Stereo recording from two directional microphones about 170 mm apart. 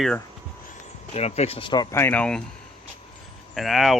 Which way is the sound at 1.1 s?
40° left (ahead or behind).